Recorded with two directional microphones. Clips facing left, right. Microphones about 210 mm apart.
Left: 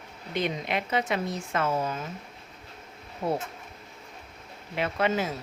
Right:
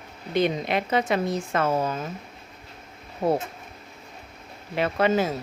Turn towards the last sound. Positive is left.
turn(degrees=-35)  # may be behind; listen again after turning